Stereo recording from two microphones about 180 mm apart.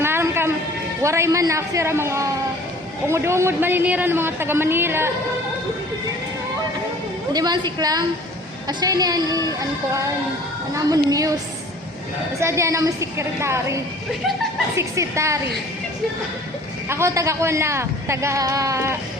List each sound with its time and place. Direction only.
0.0 s a sound: 15° right (ahead or behind)
1.0 s speech: 15° right (ahead or behind)
7.3 s a woman's voice: 25° right (ahead or behind)
12.4 s speech: 15° right (ahead or behind)
14.8 s speech: 15° right (ahead or behind)
16.9 s speech: 15° right (ahead or behind)